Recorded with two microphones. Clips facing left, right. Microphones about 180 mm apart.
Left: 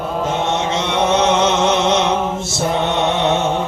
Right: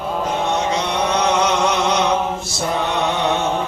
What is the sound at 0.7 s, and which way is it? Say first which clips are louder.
Chant: left 3 dB; 25° left (ahead or behind).